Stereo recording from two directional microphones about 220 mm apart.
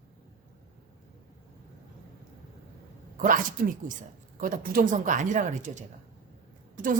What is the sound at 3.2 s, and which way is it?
Speech, 40° right (ahead or behind).